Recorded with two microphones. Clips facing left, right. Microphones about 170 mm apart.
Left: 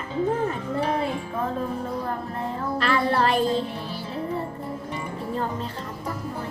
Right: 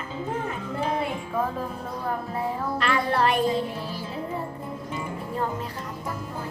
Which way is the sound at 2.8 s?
35° left (ahead or behind).